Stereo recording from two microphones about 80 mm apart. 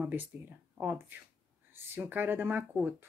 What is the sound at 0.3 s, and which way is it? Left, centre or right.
Speech, right.